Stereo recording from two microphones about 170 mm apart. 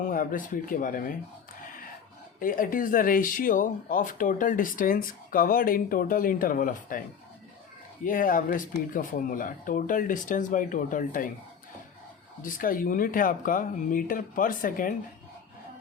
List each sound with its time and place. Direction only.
0.1 s speech: 55° left (ahead or behind)
2.4 s speech: 55° left (ahead or behind)
8.0 s speech: 55° left (ahead or behind)
12.4 s speech: 55° left (ahead or behind)